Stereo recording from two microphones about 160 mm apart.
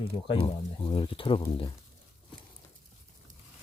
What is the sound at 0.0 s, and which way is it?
Speech, 35° left (ahead or behind).